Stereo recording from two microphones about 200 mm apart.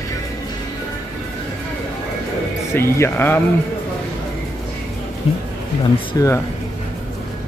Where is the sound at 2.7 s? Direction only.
10° left (ahead or behind).